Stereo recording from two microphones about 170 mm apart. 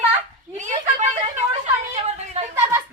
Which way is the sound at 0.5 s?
45° right (ahead or behind).